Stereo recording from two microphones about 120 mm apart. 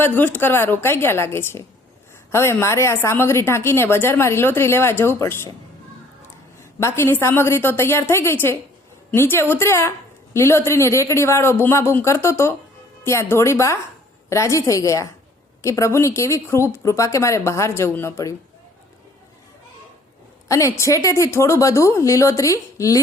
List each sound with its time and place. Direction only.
0.0 s a woman's voice: 15° left (ahead or behind)
6.7 s a woman's voice: 20° left (ahead or behind)
20.5 s a woman's voice: 25° left (ahead or behind)